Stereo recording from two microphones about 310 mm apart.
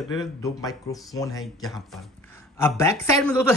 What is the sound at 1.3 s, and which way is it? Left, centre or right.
Speech, centre.